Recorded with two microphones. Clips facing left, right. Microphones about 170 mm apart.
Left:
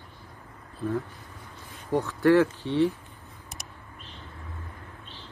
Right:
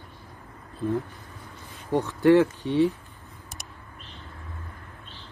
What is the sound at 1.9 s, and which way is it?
Speech, 20° right (ahead or behind).